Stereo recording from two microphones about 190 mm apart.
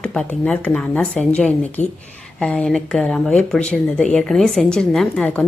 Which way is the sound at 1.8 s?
40° left (ahead or behind).